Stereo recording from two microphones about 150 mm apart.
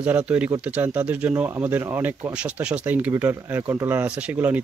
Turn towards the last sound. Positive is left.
turn(degrees=-10)  # may be behind; listen again after turning